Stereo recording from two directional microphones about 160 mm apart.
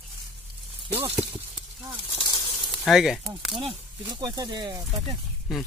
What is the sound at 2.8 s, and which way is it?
Speech, centre (ahead or behind).